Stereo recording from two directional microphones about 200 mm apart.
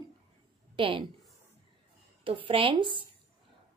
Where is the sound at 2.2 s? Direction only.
25° right (ahead or behind).